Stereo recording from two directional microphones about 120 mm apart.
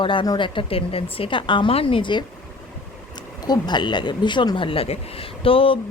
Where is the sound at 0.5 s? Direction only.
50° left (ahead or behind).